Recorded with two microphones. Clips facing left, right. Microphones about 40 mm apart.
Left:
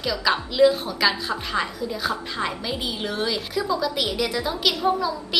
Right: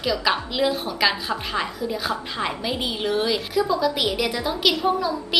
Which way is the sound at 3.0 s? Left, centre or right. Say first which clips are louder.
Right 6 dB; centre.